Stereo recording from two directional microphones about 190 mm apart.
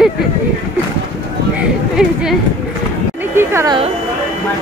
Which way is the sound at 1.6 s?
5° right (ahead or behind).